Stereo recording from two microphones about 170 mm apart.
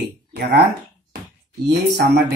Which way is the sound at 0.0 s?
70° right (ahead or behind).